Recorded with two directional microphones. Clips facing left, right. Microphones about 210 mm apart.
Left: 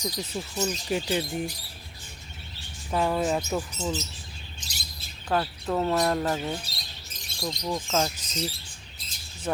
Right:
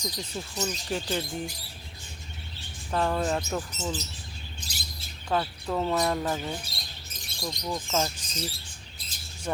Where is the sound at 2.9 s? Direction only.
10° left (ahead or behind).